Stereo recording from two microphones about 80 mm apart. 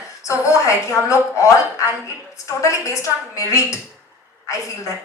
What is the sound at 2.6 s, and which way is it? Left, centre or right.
A woman's voice, left.